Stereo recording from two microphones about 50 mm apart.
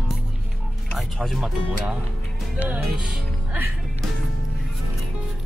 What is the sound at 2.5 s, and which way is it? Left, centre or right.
Speech, right.